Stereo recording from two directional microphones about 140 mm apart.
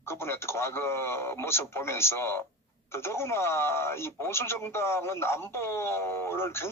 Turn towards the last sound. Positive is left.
turn(degrees=20)  # may be behind; listen again after turning